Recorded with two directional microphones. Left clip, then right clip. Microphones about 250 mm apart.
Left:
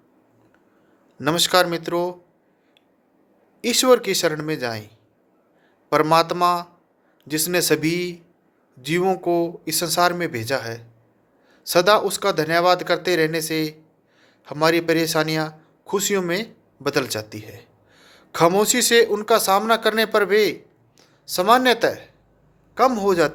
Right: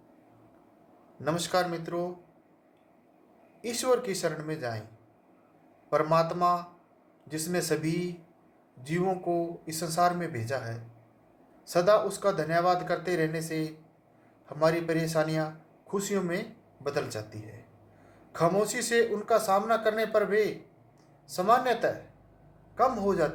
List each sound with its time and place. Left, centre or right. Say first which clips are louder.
1.2 s a man's voice: left 10 dB; left
3.6 s a man's voice: left 11 dB; left
5.9 s a man's voice: left 8 dB; left